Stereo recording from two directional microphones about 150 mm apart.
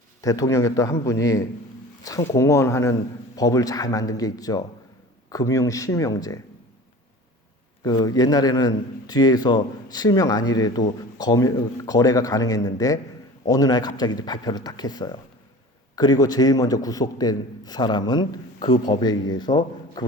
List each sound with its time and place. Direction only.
0.2 s a man's voice: 25° left (ahead or behind)
7.9 s a man's voice: 25° left (ahead or behind)